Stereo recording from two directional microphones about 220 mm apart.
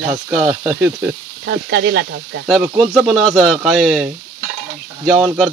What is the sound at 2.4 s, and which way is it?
Speech, centre (ahead or behind).